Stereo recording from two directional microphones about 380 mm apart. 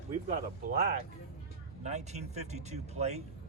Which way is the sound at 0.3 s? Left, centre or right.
Right.